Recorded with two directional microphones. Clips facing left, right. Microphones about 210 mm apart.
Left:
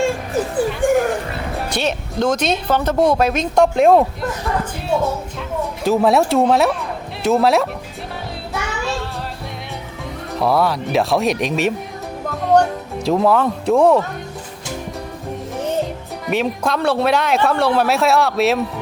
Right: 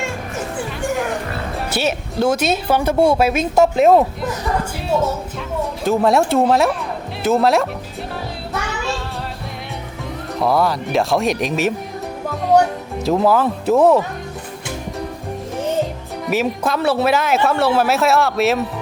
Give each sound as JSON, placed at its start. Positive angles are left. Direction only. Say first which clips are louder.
{"t": 0.8, "sound": "music", "louder": "left 7 dB", "side_deg": 55}
{"t": 1.5, "sound": "a woman's voice", "louder": "right 1 dB", "side_deg": -5}
{"t": 5.8, "sound": "speech", "louder": "left 1 dB", "side_deg": 0}
{"t": 10.3, "sound": "speech", "louder": "even", "side_deg": 0}
{"t": 12.5, "sound": "music", "louder": "even", "side_deg": -5}
{"t": 13.1, "sound": "speech", "louder": "even", "side_deg": 0}
{"t": 16.2, "sound": "speech", "louder": "even", "side_deg": -5}